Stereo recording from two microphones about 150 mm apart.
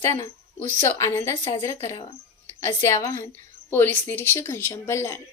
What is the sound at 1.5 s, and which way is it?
Speech, 35° left (ahead or behind).